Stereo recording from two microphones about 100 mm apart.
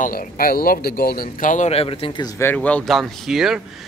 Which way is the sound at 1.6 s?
75° left (ahead or behind).